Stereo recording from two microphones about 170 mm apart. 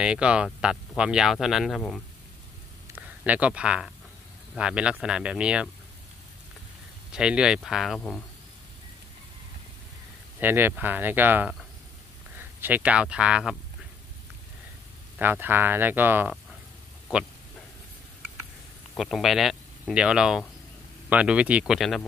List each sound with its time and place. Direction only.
0.0 s speech: 5° right (ahead or behind)
3.0 s speech: 10° right (ahead or behind)
7.1 s speech: 5° right (ahead or behind)
10.4 s speech: 10° right (ahead or behind)
15.1 s speech: 10° right (ahead or behind)
18.9 s speech: centre (ahead or behind)